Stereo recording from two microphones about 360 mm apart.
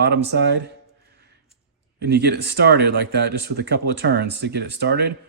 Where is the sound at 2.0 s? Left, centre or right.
Right.